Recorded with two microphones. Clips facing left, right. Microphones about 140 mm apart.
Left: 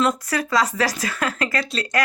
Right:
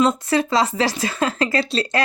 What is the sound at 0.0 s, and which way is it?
Speech, 25° right (ahead or behind).